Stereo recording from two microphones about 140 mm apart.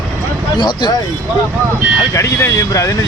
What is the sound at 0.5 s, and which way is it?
Speech, 30° left (ahead or behind).